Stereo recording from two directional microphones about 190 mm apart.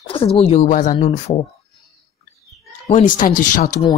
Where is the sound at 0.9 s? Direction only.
30° left (ahead or behind).